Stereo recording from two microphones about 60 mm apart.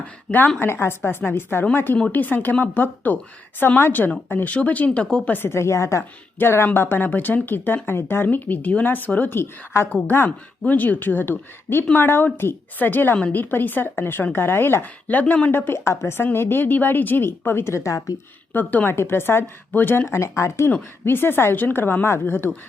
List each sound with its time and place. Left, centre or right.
0.3 s speech: left
0.6 s speech: left
5.4 s a woman's voice: left
6.4 s speech: left
15.0 s speech: left
15.5 s speech: left
15.8 s a woman's voice: left
16.2 s a woman's voice: left
18.5 s speech: left
20.1 s a woman's voice: left
21.0 s speech: left